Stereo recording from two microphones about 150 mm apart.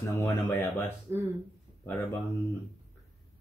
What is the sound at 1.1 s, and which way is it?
Speech, 20° right (ahead or behind).